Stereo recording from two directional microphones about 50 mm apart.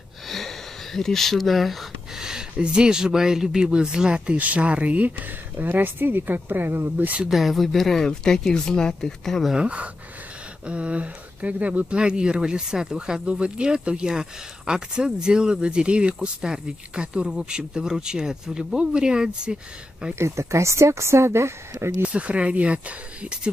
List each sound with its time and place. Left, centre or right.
0.3 s a sound: centre
2.1 s speech: centre
4.4 s speech: right
5.6 s speech: right
7.2 s speech: centre
10.7 s speech: right
20.2 s speech: right
22.0 s speech: right